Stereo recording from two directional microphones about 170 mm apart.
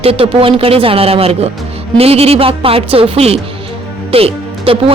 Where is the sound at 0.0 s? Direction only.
35° right (ahead or behind).